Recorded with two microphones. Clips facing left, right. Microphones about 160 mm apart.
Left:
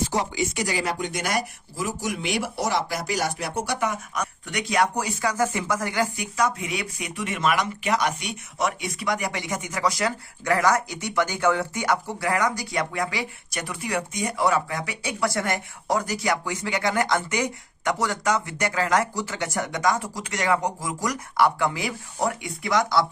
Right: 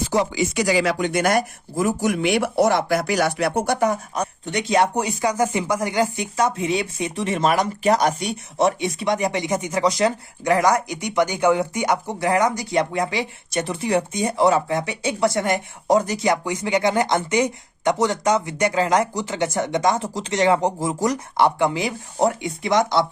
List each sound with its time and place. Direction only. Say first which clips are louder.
0.3 s speech: right 6 dB; 90° right; by 3.8 s 60° right (ahead or behind)
3.8 s speech: right 6 dB; 35° right (ahead or behind)